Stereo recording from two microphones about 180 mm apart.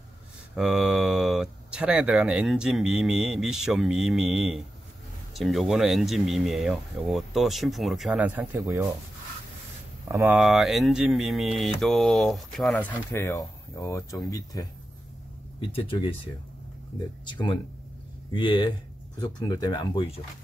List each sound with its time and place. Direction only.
0.6 s speech: 5° right (ahead or behind)
10.2 s speech: centre (ahead or behind)
12.7 s speech: 15° left (ahead or behind)
15.7 s speech: 30° left (ahead or behind)
17.3 s speech: 25° left (ahead or behind)